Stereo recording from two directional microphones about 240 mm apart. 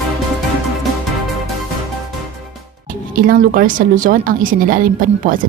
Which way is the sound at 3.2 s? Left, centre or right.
Right.